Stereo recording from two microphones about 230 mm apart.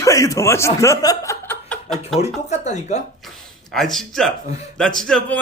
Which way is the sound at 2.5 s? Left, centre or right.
Left.